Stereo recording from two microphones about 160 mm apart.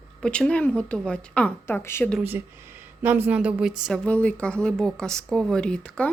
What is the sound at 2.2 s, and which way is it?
A woman's voice, 15° right (ahead or behind).